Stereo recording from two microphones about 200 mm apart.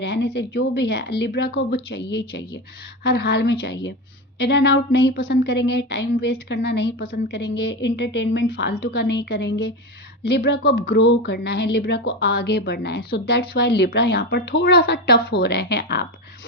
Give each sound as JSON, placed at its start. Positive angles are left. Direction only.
{"t": 0.0, "sound": "speech", "side_deg": 60}